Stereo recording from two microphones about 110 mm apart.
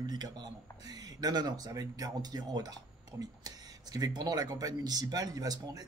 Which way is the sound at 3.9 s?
35° right (ahead or behind).